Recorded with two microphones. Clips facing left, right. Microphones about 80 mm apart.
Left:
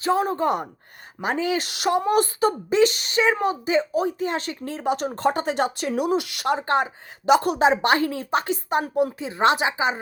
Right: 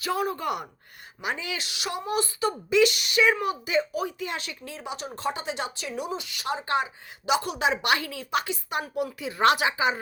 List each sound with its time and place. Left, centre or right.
0.0 s speech: left
9.1 s speech: left